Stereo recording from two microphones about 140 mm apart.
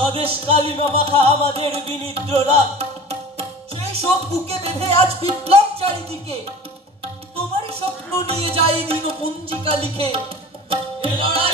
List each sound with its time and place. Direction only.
0.0 s music: 40° right (ahead or behind)
7.3 s music: 45° right (ahead or behind)
10.7 s tabla: 40° right (ahead or behind)